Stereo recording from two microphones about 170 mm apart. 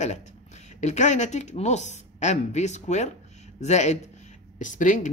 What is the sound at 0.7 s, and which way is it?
Speech, 45° left (ahead or behind).